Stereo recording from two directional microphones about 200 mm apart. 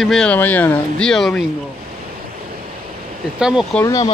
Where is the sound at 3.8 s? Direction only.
15° left (ahead or behind).